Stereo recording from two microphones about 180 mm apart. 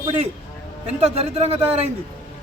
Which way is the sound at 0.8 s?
35° right (ahead or behind).